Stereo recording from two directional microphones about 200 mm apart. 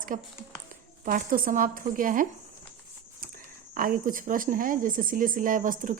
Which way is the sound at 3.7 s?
45° right (ahead or behind).